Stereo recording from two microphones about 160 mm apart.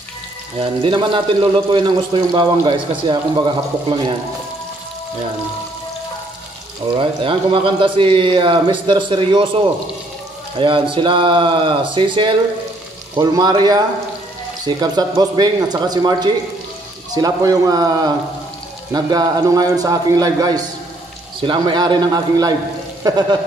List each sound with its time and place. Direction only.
0.6 s speech: 35° right (ahead or behind)
7.0 s speech: 35° right (ahead or behind)